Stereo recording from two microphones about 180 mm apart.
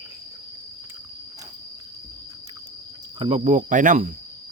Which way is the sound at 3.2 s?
35° right (ahead or behind).